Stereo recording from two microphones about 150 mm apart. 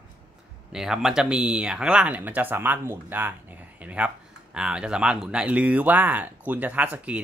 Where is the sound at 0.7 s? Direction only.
5° right (ahead or behind).